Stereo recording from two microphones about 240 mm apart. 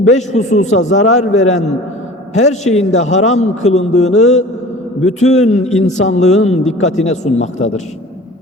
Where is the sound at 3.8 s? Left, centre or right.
Left.